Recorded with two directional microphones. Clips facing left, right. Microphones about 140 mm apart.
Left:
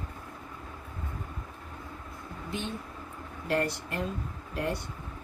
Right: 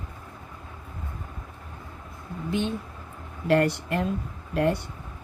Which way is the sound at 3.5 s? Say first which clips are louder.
Right 8 dB; 70° right (ahead or behind).